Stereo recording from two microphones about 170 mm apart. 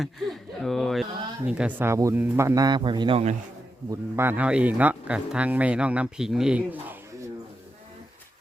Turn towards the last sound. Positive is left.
turn(degrees=-5)  # may be behind; listen again after turning